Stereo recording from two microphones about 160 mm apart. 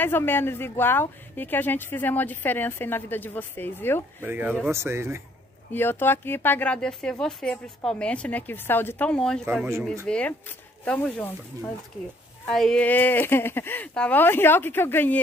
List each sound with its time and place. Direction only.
0.0 s speech: 15° left (ahead or behind)
4.2 s speech: 10° right (ahead or behind)
5.7 s speech: 15° left (ahead or behind)